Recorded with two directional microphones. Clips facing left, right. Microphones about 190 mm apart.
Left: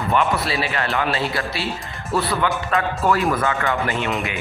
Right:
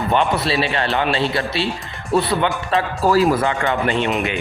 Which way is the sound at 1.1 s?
25° right (ahead or behind).